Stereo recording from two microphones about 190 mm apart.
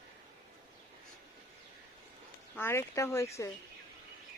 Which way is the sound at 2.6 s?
15° left (ahead or behind).